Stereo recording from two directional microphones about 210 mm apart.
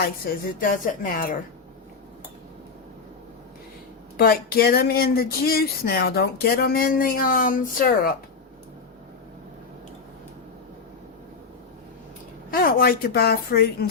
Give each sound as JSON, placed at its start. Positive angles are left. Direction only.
{"t": 0.0, "sound": "speech", "side_deg": 45}
{"t": 4.2, "sound": "speech", "side_deg": 45}
{"t": 12.5, "sound": "speech", "side_deg": 45}